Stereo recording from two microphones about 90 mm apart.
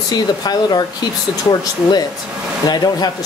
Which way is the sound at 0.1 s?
50° left (ahead or behind).